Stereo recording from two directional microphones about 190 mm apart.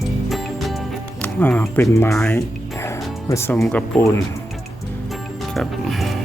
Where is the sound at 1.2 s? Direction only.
10° left (ahead or behind).